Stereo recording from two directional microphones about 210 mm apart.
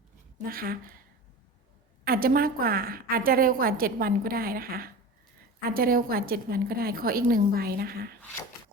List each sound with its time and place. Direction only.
0.4 s a woman's voice: 45° right (ahead or behind)
2.0 s a woman's voice: 45° right (ahead or behind)